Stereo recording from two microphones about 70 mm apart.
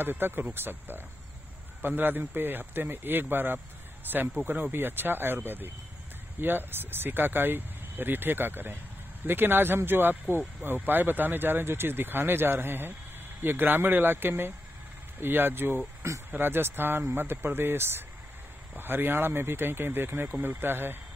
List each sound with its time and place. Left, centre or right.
0.0 s speech: right